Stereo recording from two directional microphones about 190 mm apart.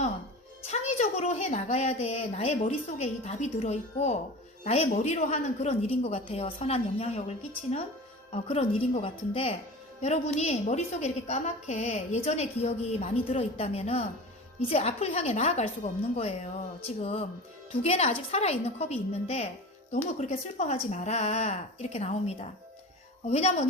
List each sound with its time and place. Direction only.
0.7 s a woman's voice: 35° left (ahead or behind)